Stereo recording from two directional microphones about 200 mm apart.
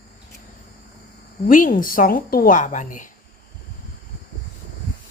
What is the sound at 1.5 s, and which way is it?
A woman's voice, 40° left (ahead or behind).